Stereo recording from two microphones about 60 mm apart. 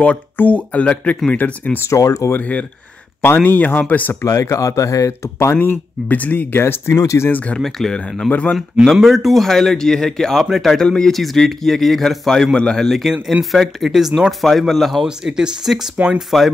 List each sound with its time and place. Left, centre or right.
0.0 s speech: left
1.9 s speech: left
2.3 s speech: left
4.2 s speech: left
5.6 s speech: left
6.5 s speech: left
7.5 s a man's voice: centre
8.3 s speech: left
8.9 s a man's voice: centre
14.4 s a man's voice: centre
15.0 s a man's voice: centre